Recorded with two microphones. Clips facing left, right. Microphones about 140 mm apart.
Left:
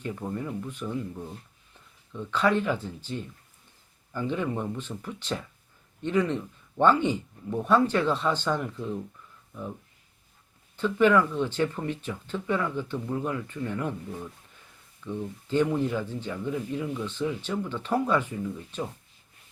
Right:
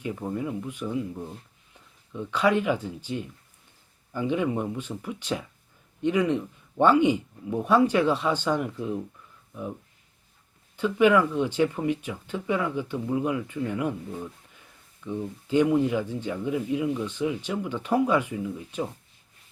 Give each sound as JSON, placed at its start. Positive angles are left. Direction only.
{"t": 0.0, "sound": "speech", "side_deg": -10}
{"t": 10.8, "sound": "speech", "side_deg": -10}